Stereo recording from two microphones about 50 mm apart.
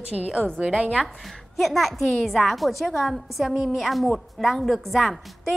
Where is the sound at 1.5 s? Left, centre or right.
Centre.